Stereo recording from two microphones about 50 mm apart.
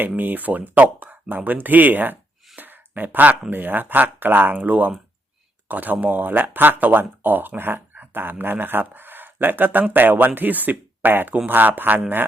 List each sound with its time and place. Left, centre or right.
0.2 s speech: right
2.6 s a sound: right
3.5 s speech: right